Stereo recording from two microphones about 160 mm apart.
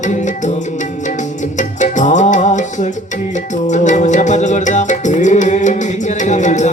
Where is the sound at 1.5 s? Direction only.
50° left (ahead or behind).